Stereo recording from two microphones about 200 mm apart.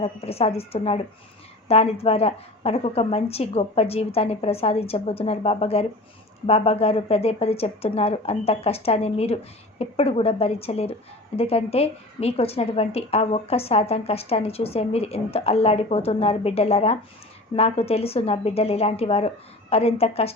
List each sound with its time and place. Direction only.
0.0 s a woman's voice: 30° left (ahead or behind)